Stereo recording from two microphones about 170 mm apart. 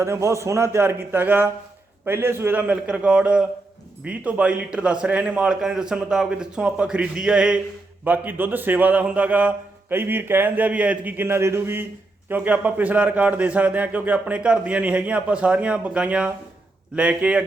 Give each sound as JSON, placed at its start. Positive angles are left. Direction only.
{"t": 0.0, "sound": "a man's voice", "side_deg": -15}